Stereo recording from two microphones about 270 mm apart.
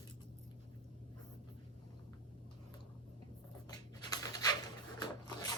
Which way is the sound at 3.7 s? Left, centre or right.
Centre.